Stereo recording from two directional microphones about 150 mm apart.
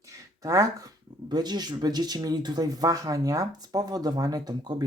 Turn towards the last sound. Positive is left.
turn(degrees=-25)  # may be behind; listen again after turning